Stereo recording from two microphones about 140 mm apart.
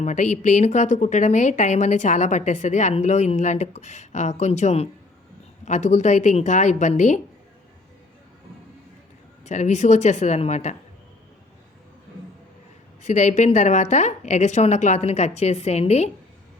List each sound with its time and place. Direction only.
0.0 s a woman's voice: 60° left (ahead or behind)
9.4 s a woman's voice: 60° left (ahead or behind)
13.0 s a woman's voice: 55° left (ahead or behind)